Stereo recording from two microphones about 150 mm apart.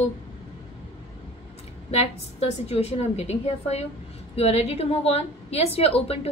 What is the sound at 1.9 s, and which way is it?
A woman's voice, 45° left (ahead or behind).